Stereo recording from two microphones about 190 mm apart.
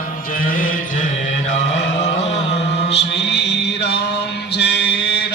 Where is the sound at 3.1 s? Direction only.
60° left (ahead or behind).